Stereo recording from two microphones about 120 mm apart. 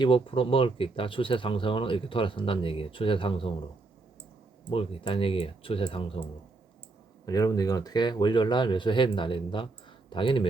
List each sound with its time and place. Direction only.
0.0 s speech: 50° left (ahead or behind)
4.7 s speech: 50° left (ahead or behind)
7.3 s speech: 30° left (ahead or behind)